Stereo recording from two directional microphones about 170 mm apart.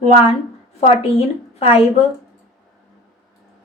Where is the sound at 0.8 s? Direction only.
35° left (ahead or behind).